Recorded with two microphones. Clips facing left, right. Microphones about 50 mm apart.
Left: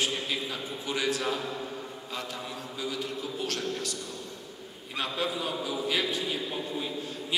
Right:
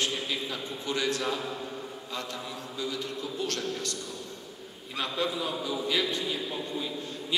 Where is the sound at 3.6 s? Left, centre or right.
Centre.